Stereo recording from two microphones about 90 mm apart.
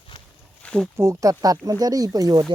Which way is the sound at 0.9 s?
35° right (ahead or behind).